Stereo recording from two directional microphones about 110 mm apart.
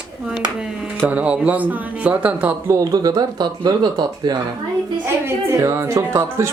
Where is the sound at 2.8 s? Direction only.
35° right (ahead or behind).